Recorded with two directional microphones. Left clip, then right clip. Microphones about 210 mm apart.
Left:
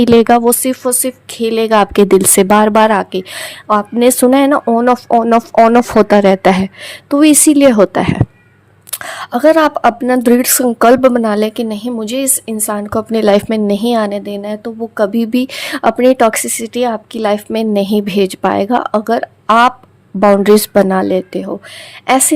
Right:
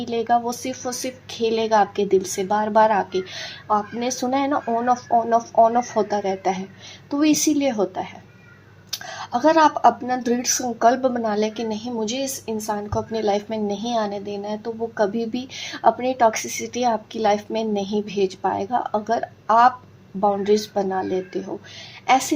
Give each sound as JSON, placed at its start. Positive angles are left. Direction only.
{"t": 0.0, "sound": "speech", "side_deg": 55}
{"t": 20.1, "sound": "speech", "side_deg": 55}